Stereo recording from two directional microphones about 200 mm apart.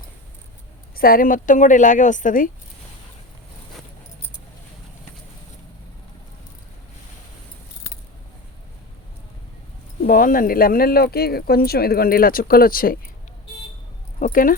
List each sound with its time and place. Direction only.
0.9 s a woman's voice: 45° left (ahead or behind)
10.0 s speech: 45° left (ahead or behind)
14.2 s speech: 40° left (ahead or behind)